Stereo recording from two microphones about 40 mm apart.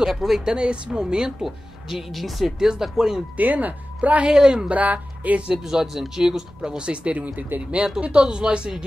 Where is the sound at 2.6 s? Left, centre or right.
Centre.